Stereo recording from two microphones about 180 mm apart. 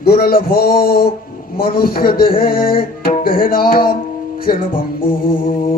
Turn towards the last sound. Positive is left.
turn(degrees=50)  # may be behind; listen again after turning